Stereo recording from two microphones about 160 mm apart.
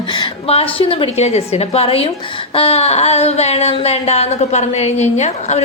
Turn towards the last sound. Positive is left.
turn(degrees=45)  # may be behind; listen again after turning